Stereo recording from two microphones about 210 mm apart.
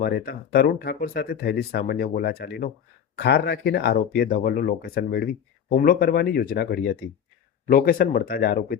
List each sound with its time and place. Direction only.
0.0 s speech: 45° left (ahead or behind)